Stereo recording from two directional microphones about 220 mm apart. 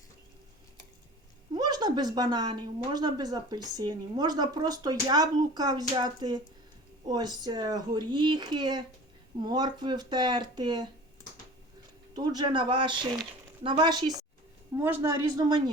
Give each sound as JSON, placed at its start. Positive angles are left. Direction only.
{"t": 1.5, "sound": "speech", "side_deg": -20}
{"t": 12.1, "sound": "speech", "side_deg": -20}